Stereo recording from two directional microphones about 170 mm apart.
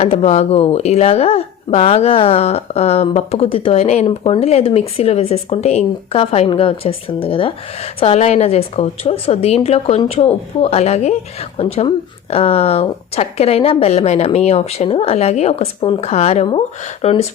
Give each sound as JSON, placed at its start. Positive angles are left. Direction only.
{"t": 0.0, "sound": "speech", "side_deg": 40}